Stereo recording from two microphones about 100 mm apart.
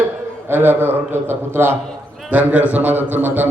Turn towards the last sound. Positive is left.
turn(degrees=-20)  # may be behind; listen again after turning